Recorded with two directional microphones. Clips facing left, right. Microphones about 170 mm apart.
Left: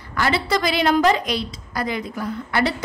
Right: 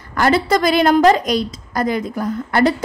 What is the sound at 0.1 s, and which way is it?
A woman's voice, 45° right (ahead or behind).